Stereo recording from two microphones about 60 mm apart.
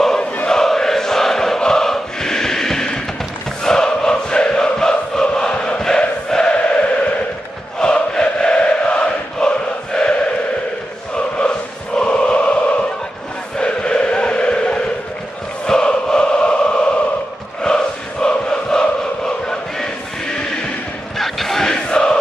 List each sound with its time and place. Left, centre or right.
0.5 s choir: centre
7.8 s chant: centre
11.1 s choir: centre
13.6 s chant: centre
15.6 s choir: centre
17.6 s crowd: centre
21.2 s crowd: centre